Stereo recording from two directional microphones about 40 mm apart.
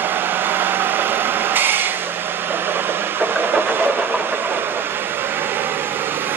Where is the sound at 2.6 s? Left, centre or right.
Right.